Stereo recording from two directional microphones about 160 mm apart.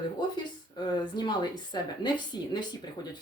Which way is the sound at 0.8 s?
25° left (ahead or behind).